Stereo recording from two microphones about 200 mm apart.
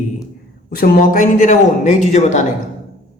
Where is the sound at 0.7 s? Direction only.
50° left (ahead or behind).